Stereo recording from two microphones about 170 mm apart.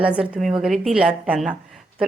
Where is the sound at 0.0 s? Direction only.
5° right (ahead or behind).